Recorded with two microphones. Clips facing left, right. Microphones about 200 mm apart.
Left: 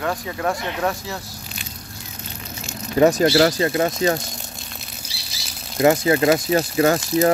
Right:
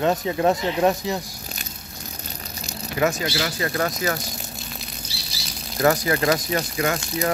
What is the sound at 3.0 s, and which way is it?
Speech, 35° left (ahead or behind).